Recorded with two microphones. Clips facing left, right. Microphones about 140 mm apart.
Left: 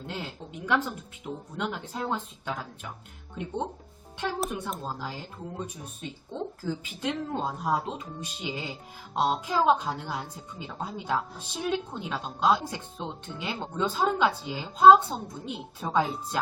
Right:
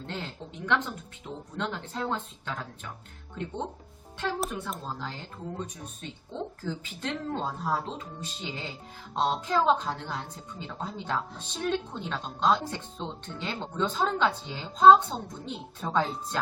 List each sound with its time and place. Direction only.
0.0 s speech: 5° left (ahead or behind)
4.4 s speech: 15° left (ahead or behind)